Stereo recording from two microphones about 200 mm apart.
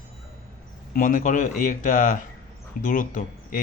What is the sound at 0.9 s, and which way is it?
Speech, 40° left (ahead or behind).